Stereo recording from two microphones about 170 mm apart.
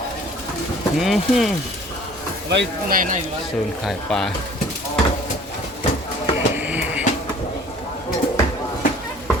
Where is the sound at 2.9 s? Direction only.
50° right (ahead or behind).